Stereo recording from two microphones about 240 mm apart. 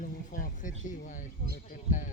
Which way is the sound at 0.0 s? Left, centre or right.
Left.